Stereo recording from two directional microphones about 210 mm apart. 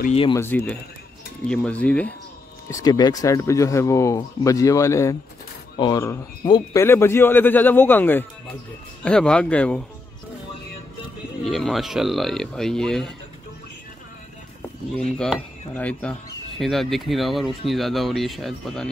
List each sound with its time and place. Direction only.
0.0 s speech: 30° left (ahead or behind)
0.3 s speech: 10° left (ahead or behind)
2.7 s speech: 20° left (ahead or behind)
11.4 s speech: centre (ahead or behind)
15.1 s speech: 5° left (ahead or behind)